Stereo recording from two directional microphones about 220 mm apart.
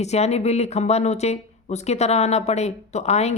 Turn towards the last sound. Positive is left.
turn(degrees=30)  # may be behind; listen again after turning